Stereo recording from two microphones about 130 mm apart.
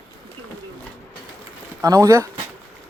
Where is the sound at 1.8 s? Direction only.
25° right (ahead or behind).